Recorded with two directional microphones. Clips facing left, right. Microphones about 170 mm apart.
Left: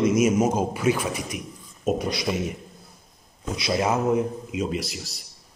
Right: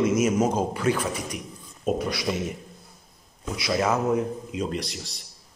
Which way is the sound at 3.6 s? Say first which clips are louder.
Even; 20° left (ahead or behind).